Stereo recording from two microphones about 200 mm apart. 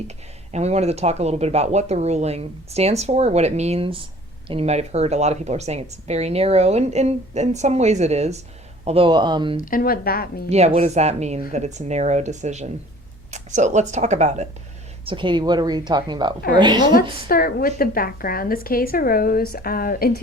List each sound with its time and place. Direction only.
0.5 s a woman's voice: 35° right (ahead or behind)
9.6 s a woman's voice: 45° left (ahead or behind)
10.5 s speech: 35° right (ahead or behind)
15.0 s a woman's voice: 25° right (ahead or behind)
17.2 s a woman's voice: 45° left (ahead or behind)